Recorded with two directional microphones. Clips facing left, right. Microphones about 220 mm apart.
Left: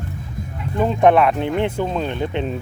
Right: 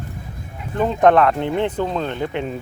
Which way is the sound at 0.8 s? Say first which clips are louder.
Even; 10° left (ahead or behind).